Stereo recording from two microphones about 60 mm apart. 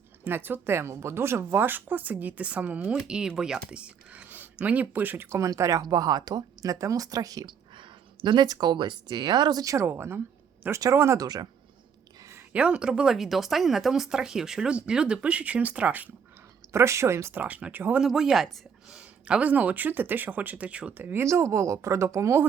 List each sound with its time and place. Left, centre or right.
0.3 s speech: right
2.8 s speech: centre; by 5.3 s right
5.3 s speech: right
6.6 s speech: right
9.6 s speech: right
9.8 s speech: right
11.2 s speech: right
12.5 s speech: centre
16.7 s speech: right
17.3 s speech: right
18.0 s speech: centre
18.9 s speech: centre
21.0 s speech: right
21.2 s speech: right